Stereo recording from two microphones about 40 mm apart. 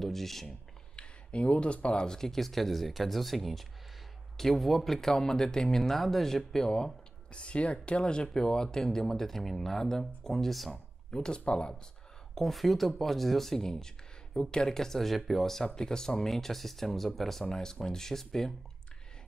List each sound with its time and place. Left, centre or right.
0.0 s speech: centre
0.9 s speech: left
2.0 s speech: centre
7.3 s speech: left; by 10.7 s centre
10.7 s speech: centre
12.4 s speech: centre